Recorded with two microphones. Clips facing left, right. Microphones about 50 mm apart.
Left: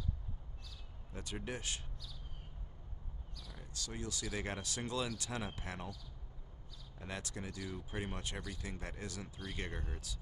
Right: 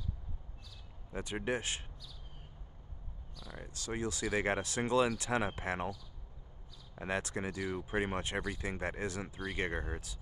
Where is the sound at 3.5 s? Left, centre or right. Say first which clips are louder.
Right 7 dB; right.